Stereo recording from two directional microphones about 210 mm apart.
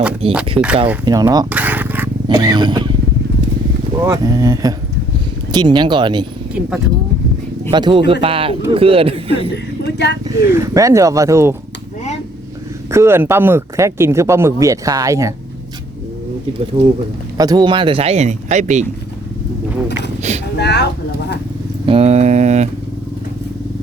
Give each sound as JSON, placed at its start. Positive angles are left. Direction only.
{"t": 0.6, "sound": "speech", "side_deg": -10}
{"t": 1.5, "sound": "a sound", "side_deg": -5}
{"t": 2.2, "sound": "speech", "side_deg": -20}
{"t": 4.0, "sound": "speech", "side_deg": -15}
{"t": 6.5, "sound": "speech", "side_deg": -5}
{"t": 7.7, "sound": "speech", "side_deg": -20}
{"t": 9.8, "sound": "speech", "side_deg": 50}
{"t": 10.2, "sound": "speech", "side_deg": -15}
{"t": 12.9, "sound": "speech", "side_deg": -10}
{"t": 16.7, "sound": "speech", "side_deg": -30}
{"t": 17.3, "sound": "speech", "side_deg": -20}
{"t": 20.6, "sound": "speech", "side_deg": 55}
{"t": 21.8, "sound": "mantra", "side_deg": -30}